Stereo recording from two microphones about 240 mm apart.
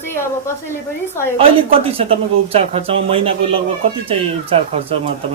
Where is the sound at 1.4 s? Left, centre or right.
Right.